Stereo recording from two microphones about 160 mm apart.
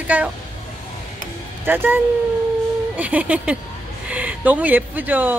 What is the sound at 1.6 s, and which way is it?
Speech, 15° right (ahead or behind).